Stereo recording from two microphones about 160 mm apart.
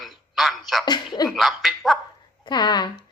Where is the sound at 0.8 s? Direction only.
25° left (ahead or behind).